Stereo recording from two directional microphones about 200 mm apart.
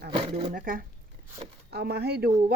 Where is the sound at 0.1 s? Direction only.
30° right (ahead or behind).